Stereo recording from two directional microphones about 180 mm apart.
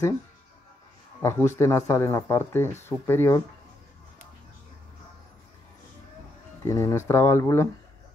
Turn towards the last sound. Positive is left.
turn(degrees=15)  # may be behind; listen again after turning